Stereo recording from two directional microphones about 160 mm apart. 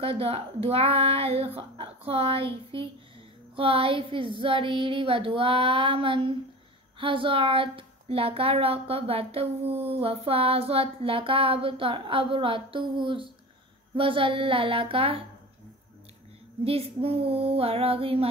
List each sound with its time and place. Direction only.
0.0 s a woman's voice: 35° right (ahead or behind)
16.6 s a woman's voice: 40° right (ahead or behind)